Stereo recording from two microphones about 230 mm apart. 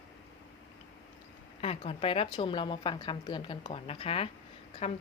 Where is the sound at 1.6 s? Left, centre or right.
Left.